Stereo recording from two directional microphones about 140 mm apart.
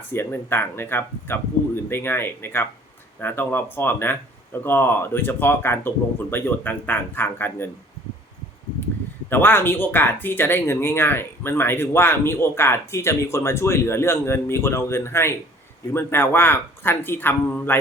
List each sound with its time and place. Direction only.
0.1 s speech: 15° left (ahead or behind)
9.3 s speech: 15° left (ahead or behind)